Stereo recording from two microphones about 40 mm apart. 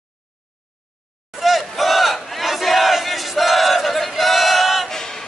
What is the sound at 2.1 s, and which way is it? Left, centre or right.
Battle cry, centre.